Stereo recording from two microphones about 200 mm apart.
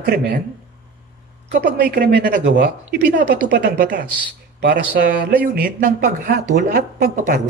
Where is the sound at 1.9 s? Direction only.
55° right (ahead or behind).